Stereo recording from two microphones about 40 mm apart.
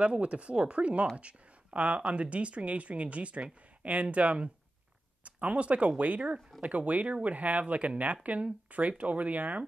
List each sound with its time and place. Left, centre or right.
0.0 s speech: right